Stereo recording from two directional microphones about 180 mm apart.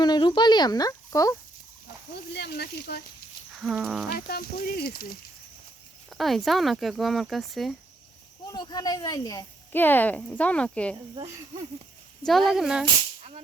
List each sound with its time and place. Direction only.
0.0 s speech: 25° left (ahead or behind)
2.1 s speech: 65° left (ahead or behind)
3.6 s speech: centre (ahead or behind)
4.3 s speech: 60° left (ahead or behind)
6.1 s speech: centre (ahead or behind)
8.5 s speech: 20° left (ahead or behind)
12.5 s speech: 5° right (ahead or behind)